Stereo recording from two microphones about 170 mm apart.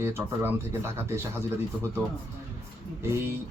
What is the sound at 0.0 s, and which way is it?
Speech, 15° right (ahead or behind).